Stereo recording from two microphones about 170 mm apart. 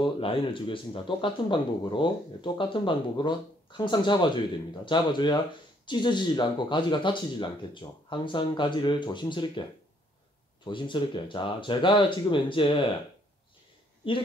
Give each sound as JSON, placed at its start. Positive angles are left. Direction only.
{"t": 0.0, "sound": "speech", "side_deg": 30}